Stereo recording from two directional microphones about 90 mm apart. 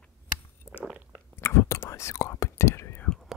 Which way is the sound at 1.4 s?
30° left (ahead or behind).